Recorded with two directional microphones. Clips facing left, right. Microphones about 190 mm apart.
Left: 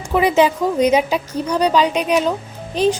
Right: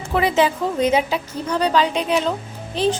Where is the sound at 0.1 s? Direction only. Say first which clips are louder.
Left 3 dB; 15° left (ahead or behind).